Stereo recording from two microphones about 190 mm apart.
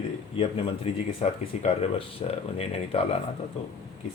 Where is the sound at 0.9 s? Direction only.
30° left (ahead or behind).